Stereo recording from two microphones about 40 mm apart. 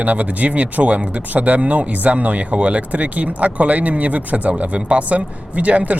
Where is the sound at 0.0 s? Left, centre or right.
Right.